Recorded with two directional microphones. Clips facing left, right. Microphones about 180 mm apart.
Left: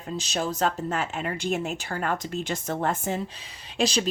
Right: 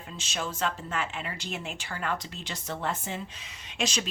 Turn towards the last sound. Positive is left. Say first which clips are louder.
# left 6 dB
turn(degrees=35)  # may be behind; listen again after turning